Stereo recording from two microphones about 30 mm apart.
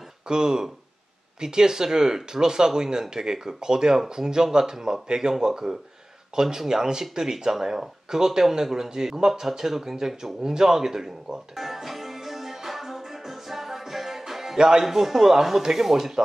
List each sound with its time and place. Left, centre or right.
0.3 s speech: right
11.5 s music: centre
14.6 s speech: right
14.9 s speech: centre